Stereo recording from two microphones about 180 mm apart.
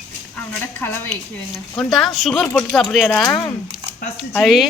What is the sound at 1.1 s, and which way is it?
Speech, centre (ahead or behind).